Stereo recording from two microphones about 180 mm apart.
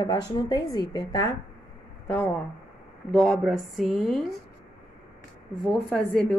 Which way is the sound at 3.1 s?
Centre (ahead or behind).